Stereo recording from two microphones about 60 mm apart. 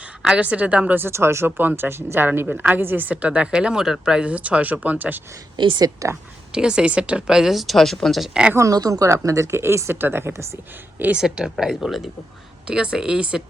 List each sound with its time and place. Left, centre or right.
0.2 s a sound: centre
0.4 s speech: right
0.9 s speech: right
1.5 s speech: right
6.0 s speech: right
6.5 s speech: centre
8.3 s speech: centre
8.5 s speech: right
9.0 s speech: right
9.6 s speech: right
11.2 s speech: centre
12.6 s speech: centre